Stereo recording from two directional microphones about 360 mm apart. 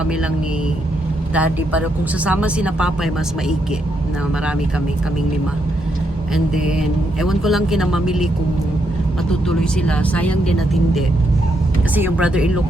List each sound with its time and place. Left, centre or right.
1.3 s speech: centre
6.3 s speech: centre
9.6 s speech: centre
11.9 s speech: centre